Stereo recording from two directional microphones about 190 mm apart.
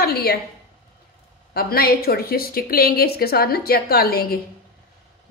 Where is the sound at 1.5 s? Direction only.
55° left (ahead or behind).